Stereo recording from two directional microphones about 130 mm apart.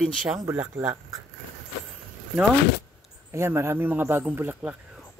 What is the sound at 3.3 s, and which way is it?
A man's voice, 20° right (ahead or behind).